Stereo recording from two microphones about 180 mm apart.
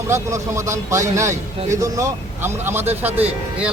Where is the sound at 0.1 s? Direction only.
15° right (ahead or behind).